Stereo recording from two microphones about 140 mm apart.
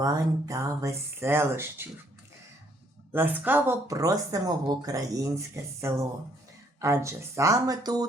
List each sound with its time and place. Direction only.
0.0 s speech: 20° right (ahead or behind)
3.1 s speech: 15° right (ahead or behind)
6.7 s speech: 20° right (ahead or behind)